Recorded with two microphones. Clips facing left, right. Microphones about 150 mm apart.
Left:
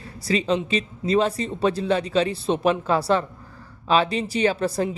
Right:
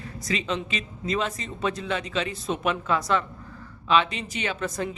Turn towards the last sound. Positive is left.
turn(degrees=35)  # may be behind; listen again after turning